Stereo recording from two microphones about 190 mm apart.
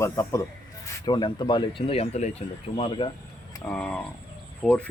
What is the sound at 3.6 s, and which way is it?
A man's voice, 5° left (ahead or behind).